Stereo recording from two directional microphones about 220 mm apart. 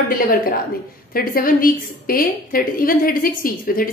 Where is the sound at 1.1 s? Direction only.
40° left (ahead or behind).